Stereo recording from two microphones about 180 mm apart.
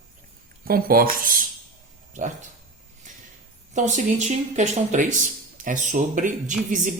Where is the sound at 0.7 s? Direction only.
55° right (ahead or behind).